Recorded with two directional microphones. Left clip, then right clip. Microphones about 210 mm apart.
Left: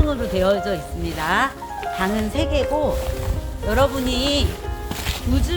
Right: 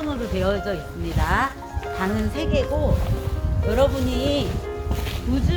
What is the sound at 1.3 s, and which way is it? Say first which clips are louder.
Speech: left 3 dB; 45° left (ahead or behind).